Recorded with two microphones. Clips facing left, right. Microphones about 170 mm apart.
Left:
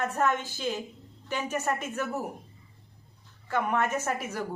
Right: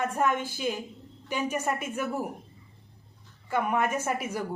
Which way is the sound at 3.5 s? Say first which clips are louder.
Right 1 dB; 10° right (ahead or behind).